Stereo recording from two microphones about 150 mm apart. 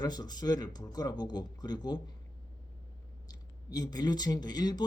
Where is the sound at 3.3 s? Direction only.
25° left (ahead or behind).